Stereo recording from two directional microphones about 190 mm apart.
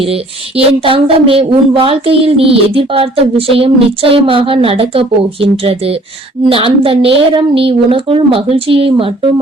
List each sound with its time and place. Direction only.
0.0 s speech: 30° right (ahead or behind)